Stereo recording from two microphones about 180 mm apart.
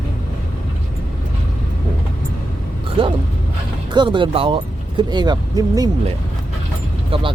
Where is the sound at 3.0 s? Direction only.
30° right (ahead or behind).